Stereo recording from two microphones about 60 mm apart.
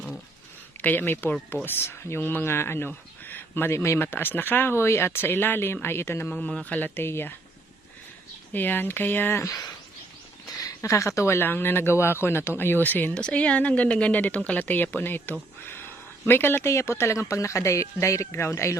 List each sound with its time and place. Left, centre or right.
0.8 s speech: left
6.7 s speech: left
8.5 s speech: left
9.4 s speech: left
10.4 s a sound: left
10.8 s speech: left
13.1 s speech: centre; by 16.6 s left
16.6 s speech: left